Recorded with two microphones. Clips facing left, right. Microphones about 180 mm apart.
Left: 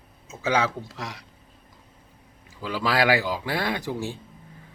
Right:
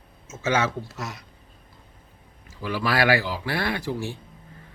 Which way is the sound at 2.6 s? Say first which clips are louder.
Even; 15° left (ahead or behind).